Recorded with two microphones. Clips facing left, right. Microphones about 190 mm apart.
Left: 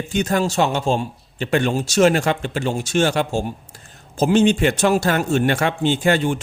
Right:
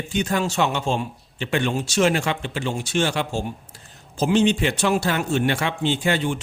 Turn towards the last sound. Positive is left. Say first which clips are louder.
# left 4 dB
turn(degrees=45)  # may be behind; listen again after turning